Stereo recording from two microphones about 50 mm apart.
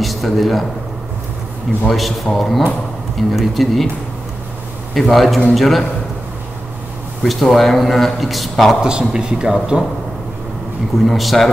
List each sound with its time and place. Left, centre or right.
0.0 s a man's voice: centre
1.9 s a man's voice: centre
4.9 s a man's voice: centre
7.2 s a man's voice: centre
8.8 s speech: centre
11.1 s a man's voice: centre